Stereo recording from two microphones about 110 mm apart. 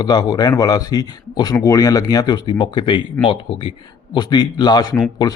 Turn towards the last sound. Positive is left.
turn(degrees=40)  # may be behind; listen again after turning